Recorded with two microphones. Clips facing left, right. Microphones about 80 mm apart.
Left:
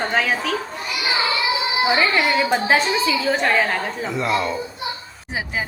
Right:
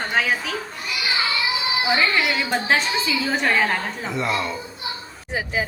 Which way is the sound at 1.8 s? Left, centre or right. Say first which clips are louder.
Left 2 dB; centre.